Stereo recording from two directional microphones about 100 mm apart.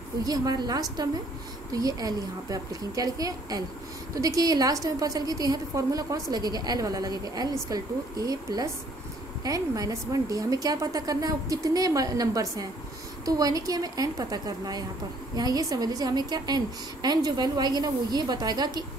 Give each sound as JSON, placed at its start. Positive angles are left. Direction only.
{"t": 0.2, "sound": "a woman's voice", "side_deg": -40}